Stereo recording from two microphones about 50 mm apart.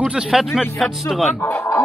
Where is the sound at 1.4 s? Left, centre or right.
Left.